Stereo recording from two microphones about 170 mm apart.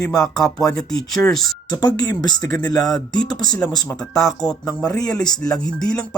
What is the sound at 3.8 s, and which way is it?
Speech, centre (ahead or behind).